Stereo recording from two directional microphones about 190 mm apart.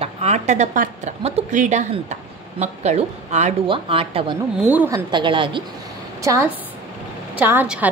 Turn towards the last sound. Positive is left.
turn(degrees=-5)  # may be behind; listen again after turning